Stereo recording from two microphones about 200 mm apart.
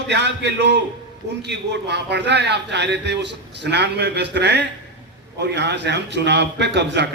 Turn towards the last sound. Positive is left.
turn(degrees=-60)  # may be behind; listen again after turning